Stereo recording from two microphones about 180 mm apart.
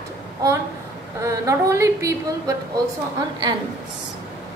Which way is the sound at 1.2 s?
15° right (ahead or behind).